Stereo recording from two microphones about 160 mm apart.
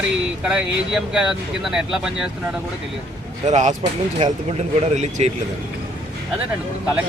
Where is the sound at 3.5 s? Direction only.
50° right (ahead or behind).